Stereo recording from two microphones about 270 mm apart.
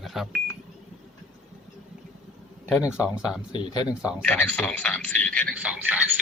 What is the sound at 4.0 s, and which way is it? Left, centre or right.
Speech, centre.